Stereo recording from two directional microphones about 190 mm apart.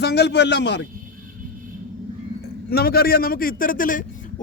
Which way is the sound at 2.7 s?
55° left (ahead or behind).